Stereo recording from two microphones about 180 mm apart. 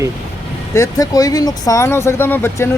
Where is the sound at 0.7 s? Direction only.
20° left (ahead or behind).